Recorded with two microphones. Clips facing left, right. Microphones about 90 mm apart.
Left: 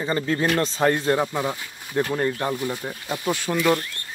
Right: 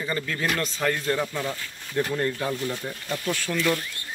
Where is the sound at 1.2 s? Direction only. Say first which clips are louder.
Left 4 dB; 15° left (ahead or behind).